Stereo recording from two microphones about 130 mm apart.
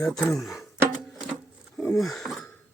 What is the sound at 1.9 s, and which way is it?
Speech, centre (ahead or behind).